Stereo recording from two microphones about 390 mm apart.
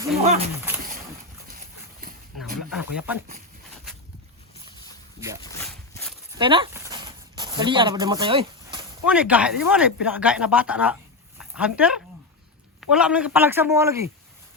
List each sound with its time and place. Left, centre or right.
0.2 s speech: centre
2.0 s dog: right
2.7 s speech: centre
5.4 s a sound: centre
6.4 s a sound: centre
9.0 s speech: centre